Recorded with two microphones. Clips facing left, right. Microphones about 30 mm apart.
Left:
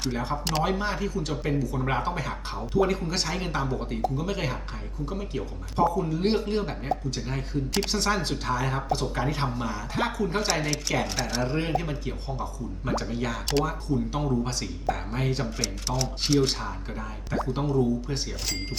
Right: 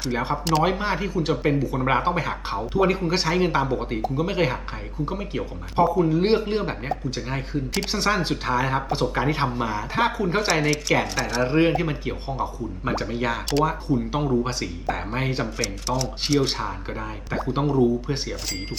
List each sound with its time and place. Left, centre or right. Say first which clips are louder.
0.6 s speech: right 4 dB; right
10.5 s speech: right 6 dB; centre
11.4 s speech: right 7 dB; right
15.5 s speech: right 4 dB; centre
17.3 s speech: right 3 dB; right